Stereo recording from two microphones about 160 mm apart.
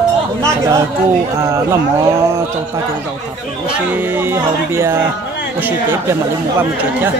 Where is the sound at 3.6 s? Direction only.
10° right (ahead or behind).